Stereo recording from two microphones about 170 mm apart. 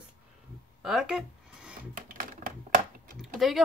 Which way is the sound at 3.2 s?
Centre (ahead or behind).